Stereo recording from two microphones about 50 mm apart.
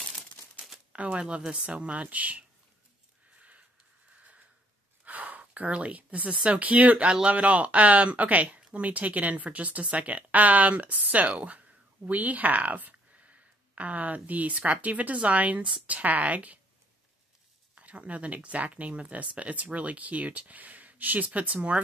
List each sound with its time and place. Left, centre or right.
0.9 s speech: right
3.3 s a sound: right
5.0 s speech: right
17.7 s speech: right